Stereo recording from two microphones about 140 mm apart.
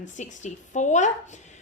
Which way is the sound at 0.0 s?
60° left (ahead or behind).